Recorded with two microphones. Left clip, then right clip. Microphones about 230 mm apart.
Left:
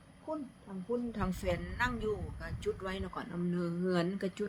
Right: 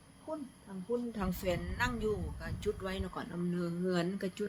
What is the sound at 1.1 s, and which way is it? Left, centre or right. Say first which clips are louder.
A woman's voice: even; centre.